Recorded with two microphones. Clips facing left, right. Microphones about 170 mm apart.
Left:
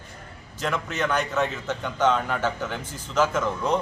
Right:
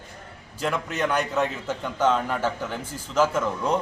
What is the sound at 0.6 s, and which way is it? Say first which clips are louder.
A man's voice: right 1 dB; 10° right (ahead or behind).